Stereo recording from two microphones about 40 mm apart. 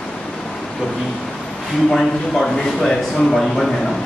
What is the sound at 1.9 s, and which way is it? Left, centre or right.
A man's voice, centre.